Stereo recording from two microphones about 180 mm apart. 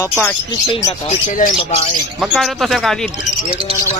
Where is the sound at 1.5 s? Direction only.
30° left (ahead or behind).